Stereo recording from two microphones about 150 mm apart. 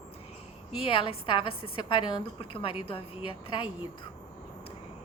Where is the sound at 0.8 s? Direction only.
35° left (ahead or behind).